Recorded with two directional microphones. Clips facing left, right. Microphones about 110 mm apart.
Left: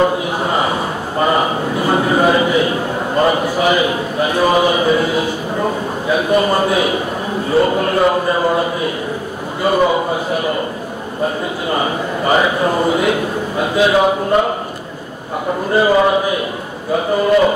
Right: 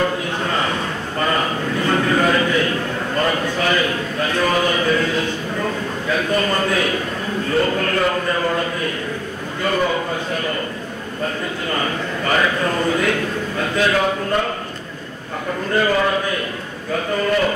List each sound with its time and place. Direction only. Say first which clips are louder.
0.0 s a sound: left 5 dB; 20° left (ahead or behind)
5.6 s a man's voice: left 6 dB; 20° left (ahead or behind)
15.7 s a man's voice: left 5 dB; 20° left (ahead or behind)